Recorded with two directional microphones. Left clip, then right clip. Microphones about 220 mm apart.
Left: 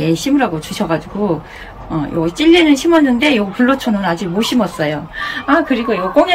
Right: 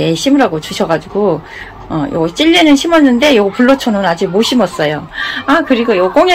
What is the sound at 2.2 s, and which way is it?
Speech, 15° right (ahead or behind).